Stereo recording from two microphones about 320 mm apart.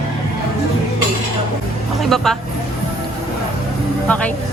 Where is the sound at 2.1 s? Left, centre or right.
Centre.